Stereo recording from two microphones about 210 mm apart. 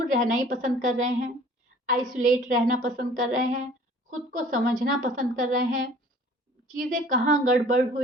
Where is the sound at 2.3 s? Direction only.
40° right (ahead or behind).